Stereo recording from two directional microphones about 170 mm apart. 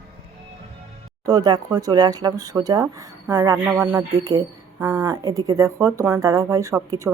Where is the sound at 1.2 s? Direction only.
25° right (ahead or behind).